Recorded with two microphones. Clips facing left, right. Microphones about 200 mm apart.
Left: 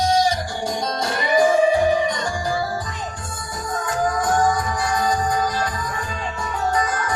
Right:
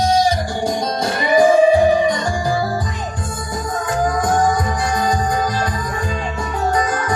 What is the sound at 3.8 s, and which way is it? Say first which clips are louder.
Music: right 3 dB; 15° right (ahead or behind).